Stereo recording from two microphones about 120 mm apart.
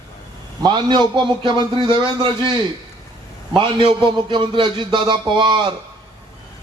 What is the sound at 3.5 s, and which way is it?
A man's voice, 40° right (ahead or behind).